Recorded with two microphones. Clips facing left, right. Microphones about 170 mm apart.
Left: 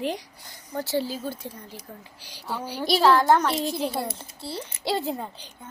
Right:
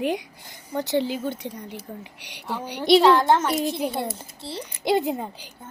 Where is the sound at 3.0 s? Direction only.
Centre (ahead or behind).